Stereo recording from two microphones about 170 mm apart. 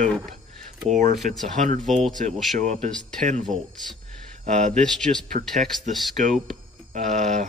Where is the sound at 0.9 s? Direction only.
45° right (ahead or behind).